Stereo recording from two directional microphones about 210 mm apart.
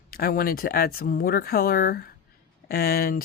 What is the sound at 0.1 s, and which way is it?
Speech, 45° left (ahead or behind).